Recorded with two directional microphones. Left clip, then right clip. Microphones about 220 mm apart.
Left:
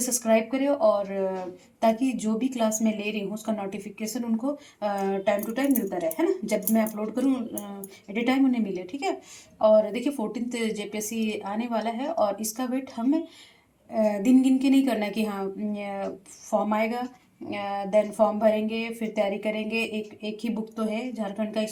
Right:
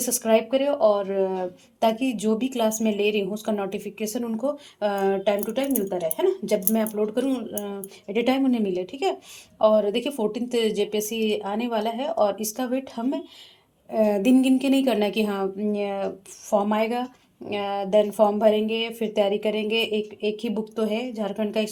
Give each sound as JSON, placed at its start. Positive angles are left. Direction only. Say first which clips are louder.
{"t": 0.0, "sound": "a woman's voice", "louder": "right 2 dB", "side_deg": -55}